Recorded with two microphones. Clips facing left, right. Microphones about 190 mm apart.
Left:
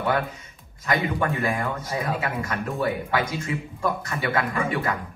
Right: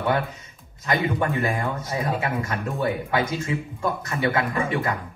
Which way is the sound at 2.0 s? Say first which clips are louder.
Right 3 dB; 25° right (ahead or behind).